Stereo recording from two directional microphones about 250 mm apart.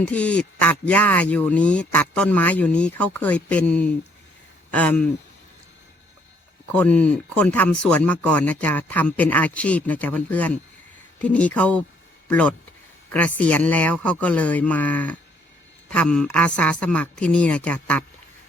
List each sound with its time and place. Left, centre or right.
0.0 s speech: centre
6.7 s speech: centre